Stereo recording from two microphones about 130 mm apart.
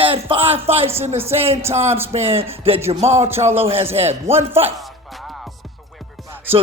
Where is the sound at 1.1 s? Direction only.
15° right (ahead or behind).